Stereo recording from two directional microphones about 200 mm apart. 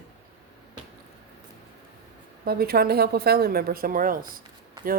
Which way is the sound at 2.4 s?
50° right (ahead or behind).